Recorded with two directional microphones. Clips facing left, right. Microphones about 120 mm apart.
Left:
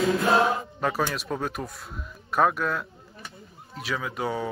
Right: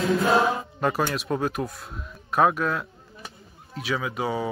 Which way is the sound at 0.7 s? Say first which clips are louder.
Right 2 dB; centre (ahead or behind).